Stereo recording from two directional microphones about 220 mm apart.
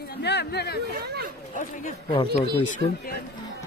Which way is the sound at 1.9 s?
25° left (ahead or behind).